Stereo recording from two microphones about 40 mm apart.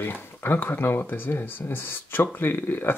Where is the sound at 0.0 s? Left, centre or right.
Left.